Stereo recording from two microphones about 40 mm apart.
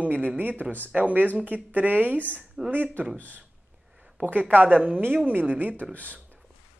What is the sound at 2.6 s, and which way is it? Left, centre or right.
Speech, centre.